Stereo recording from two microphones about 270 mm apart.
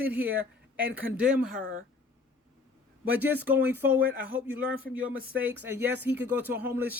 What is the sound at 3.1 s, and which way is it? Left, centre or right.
Speech, centre.